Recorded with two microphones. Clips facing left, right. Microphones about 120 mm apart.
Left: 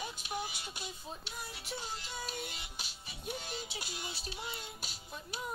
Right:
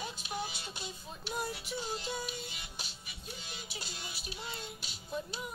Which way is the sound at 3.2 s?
55° left (ahead or behind).